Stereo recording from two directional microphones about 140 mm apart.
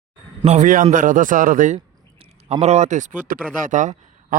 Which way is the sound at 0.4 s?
60° right (ahead or behind).